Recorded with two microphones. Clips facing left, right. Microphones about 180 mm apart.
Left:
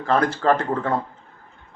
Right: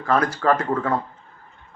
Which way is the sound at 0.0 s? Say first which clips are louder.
Left 1 dB; 30° left (ahead or behind).